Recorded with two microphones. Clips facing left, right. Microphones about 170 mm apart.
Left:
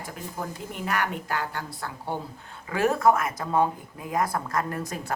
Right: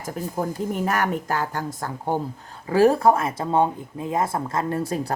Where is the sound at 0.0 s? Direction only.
45° right (ahead or behind).